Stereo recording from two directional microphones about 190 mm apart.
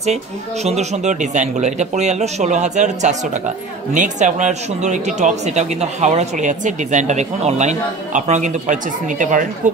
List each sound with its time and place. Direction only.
0.7 s speech: 35° right (ahead or behind)